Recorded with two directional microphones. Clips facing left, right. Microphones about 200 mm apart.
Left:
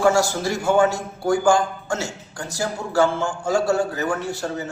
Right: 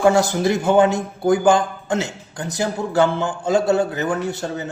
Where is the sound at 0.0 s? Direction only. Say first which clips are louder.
Right 3 dB; 20° right (ahead or behind).